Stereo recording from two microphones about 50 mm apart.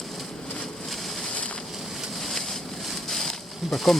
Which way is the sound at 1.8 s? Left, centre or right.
Centre.